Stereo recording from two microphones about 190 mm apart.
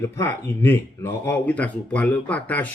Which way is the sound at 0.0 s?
15° left (ahead or behind).